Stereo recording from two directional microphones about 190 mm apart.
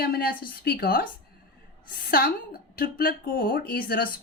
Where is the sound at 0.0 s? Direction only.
50° left (ahead or behind).